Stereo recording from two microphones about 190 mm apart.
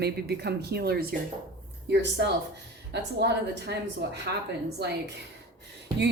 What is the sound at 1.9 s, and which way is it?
Speech, 65° right (ahead or behind).